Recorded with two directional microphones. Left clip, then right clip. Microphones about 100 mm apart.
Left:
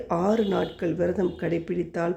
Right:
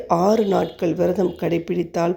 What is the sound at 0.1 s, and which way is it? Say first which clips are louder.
A woman's voice: right 7 dB; 30° right (ahead or behind).